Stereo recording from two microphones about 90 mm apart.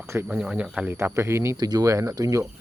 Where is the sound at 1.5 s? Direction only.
50° right (ahead or behind).